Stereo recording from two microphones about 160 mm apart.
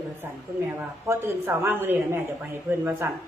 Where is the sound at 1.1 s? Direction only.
15° right (ahead or behind).